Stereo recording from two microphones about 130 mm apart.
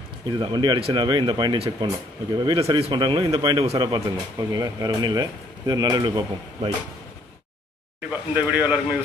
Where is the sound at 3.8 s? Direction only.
35° right (ahead or behind).